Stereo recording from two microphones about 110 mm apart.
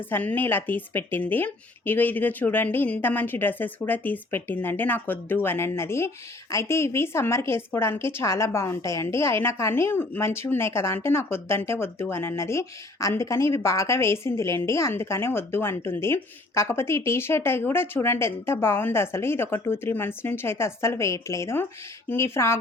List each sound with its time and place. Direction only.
0.1 s a woman's voice: 15° left (ahead or behind)